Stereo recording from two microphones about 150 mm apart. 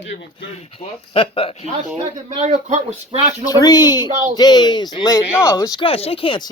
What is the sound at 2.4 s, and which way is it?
Speech, 55° right (ahead or behind).